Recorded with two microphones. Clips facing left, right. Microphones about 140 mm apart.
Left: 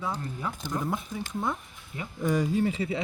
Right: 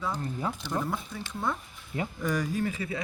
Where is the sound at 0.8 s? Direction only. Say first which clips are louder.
Left 2 dB; 20° left (ahead or behind).